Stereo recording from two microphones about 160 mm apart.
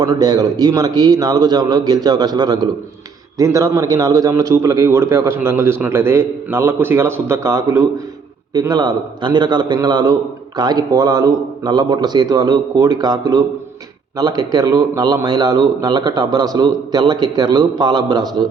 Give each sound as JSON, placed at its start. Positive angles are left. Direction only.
{"t": 0.0, "sound": "a man's voice", "side_deg": -25}